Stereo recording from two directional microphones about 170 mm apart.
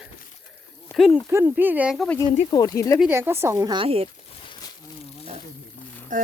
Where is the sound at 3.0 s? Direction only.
10° right (ahead or behind).